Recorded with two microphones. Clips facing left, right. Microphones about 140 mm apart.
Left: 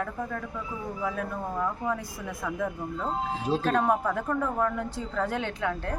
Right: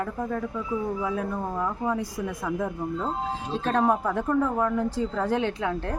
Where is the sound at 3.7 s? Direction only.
30° right (ahead or behind).